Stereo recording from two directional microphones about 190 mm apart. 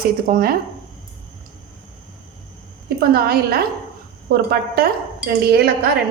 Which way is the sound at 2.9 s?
55° right (ahead or behind).